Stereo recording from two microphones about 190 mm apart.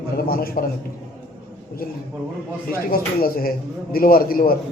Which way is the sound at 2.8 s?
50° left (ahead or behind).